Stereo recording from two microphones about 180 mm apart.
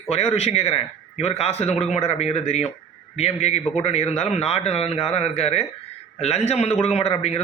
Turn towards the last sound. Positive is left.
turn(degrees=35)  # may be behind; listen again after turning